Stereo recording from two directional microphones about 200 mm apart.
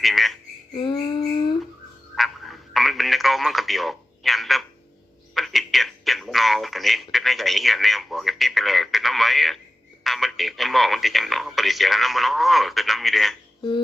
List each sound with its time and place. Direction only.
0.0 s speech: centre (ahead or behind)
0.8 s a sound: 20° left (ahead or behind)
2.1 s radio: centre (ahead or behind)
5.3 s speech: centre (ahead or behind)